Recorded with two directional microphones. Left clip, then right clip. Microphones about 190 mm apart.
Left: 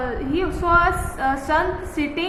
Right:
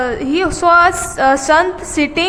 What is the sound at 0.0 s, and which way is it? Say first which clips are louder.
A woman's voice: right 8 dB; 60° right (ahead or behind).